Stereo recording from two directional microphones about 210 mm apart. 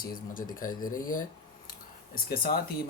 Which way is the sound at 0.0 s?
40° left (ahead or behind).